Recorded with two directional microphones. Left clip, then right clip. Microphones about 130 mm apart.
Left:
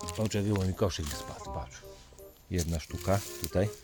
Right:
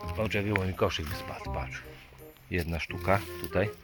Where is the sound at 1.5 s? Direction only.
15° left (ahead or behind).